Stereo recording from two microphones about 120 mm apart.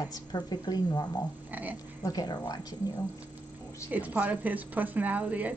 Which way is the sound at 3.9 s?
15° right (ahead or behind).